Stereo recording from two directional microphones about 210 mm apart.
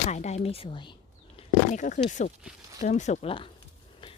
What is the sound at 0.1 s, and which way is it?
Speech, 35° left (ahead or behind).